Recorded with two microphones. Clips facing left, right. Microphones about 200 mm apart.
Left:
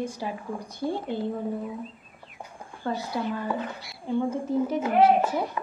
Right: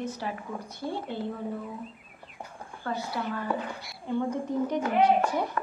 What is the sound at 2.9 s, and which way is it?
Speech, 20° left (ahead or behind).